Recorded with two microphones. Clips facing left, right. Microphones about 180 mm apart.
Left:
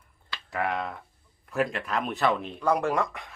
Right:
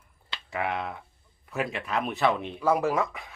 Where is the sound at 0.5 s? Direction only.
Centre (ahead or behind).